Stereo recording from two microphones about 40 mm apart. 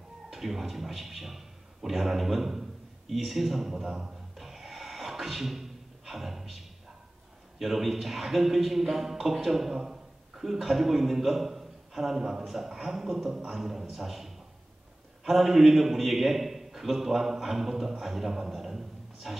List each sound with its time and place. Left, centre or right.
0.3 s a man's voice: centre
9.8 s a sound: centre
10.4 s a man's voice: centre